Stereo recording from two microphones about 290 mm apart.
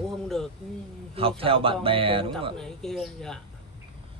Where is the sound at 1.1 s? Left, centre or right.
Centre.